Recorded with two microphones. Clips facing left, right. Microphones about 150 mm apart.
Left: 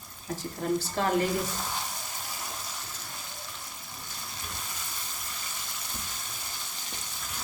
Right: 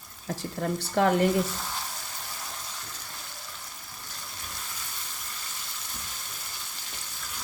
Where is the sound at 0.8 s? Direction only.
65° right (ahead or behind).